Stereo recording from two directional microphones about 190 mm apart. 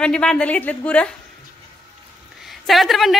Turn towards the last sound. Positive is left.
turn(degrees=0)  # may be behind; listen again after turning